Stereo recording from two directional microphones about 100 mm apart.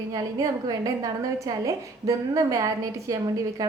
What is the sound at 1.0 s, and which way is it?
Speech, 35° right (ahead or behind).